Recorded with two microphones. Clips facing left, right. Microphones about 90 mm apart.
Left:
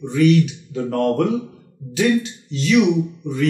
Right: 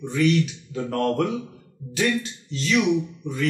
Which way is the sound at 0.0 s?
25° left (ahead or behind).